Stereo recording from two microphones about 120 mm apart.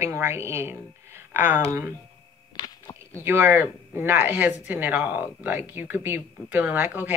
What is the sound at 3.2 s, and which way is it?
Speech, 20° right (ahead or behind).